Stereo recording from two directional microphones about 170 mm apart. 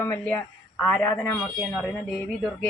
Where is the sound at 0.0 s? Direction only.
10° left (ahead or behind).